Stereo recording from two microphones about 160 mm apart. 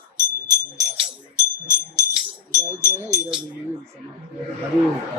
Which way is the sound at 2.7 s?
25° right (ahead or behind).